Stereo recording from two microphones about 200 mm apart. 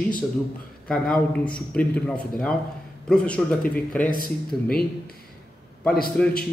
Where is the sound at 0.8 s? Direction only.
5° left (ahead or behind).